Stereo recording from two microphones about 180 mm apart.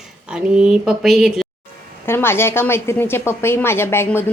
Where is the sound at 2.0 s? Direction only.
15° left (ahead or behind).